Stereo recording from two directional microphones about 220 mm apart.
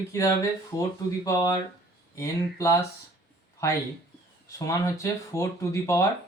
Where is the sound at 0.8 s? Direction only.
15° left (ahead or behind).